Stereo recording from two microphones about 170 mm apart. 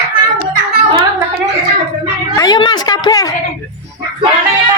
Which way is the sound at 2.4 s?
25° left (ahead or behind).